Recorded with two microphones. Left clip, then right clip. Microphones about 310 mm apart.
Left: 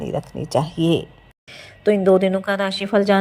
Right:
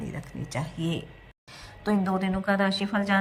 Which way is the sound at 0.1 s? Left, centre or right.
Left.